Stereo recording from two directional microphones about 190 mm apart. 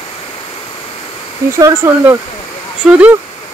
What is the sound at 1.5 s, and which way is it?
Speech, 15° right (ahead or behind).